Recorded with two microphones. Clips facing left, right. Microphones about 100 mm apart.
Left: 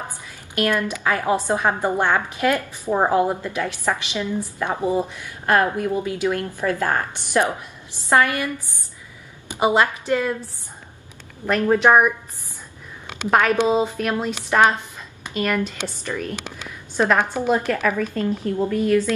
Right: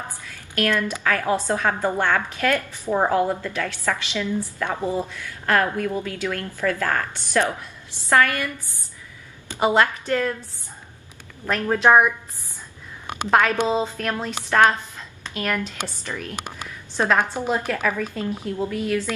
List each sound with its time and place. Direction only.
0.3 s a woman's voice: 20° left (ahead or behind)
9.5 s a woman's voice: 15° left (ahead or behind)
11.4 s a woman's voice: 10° left (ahead or behind)
13.3 s a woman's voice: 10° left (ahead or behind)
17.8 s a woman's voice: centre (ahead or behind)